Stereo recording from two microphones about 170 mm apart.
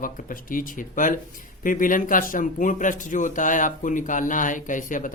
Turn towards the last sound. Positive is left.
turn(degrees=50)  # may be behind; listen again after turning